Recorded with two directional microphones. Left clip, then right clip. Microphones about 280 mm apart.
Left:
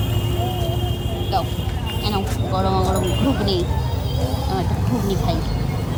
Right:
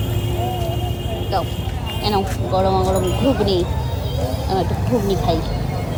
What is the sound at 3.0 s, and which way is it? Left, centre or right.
Speech, centre.